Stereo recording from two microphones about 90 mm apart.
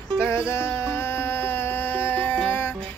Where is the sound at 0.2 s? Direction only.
30° left (ahead or behind).